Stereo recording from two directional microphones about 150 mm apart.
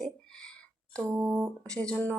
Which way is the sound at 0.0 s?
5° left (ahead or behind).